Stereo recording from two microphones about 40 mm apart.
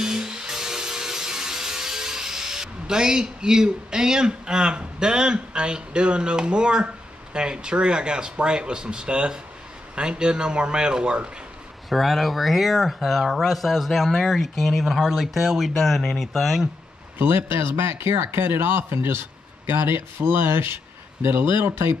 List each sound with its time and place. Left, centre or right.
0.0 s music: centre
7.3 s speech: right
11.9 s speech: centre
17.2 s speech: right